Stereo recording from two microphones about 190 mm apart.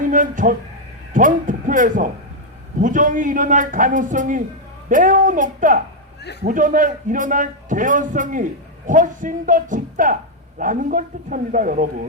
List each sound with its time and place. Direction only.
0.1 s a man's voice: 45° right (ahead or behind)